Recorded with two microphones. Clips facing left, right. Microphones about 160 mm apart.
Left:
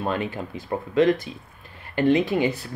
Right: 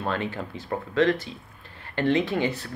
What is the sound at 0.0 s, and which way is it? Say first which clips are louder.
Speech: left 2 dB; 15° left (ahead or behind).